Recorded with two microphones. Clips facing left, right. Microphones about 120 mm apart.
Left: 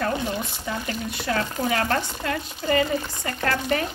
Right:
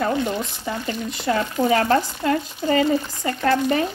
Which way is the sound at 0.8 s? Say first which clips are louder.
Right 6 dB; 25° right (ahead or behind).